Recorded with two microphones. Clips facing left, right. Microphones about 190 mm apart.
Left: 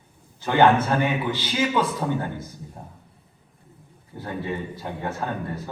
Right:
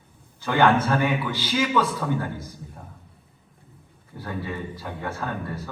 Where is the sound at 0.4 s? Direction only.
25° left (ahead or behind).